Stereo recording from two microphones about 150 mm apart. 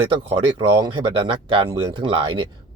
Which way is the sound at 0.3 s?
35° right (ahead or behind).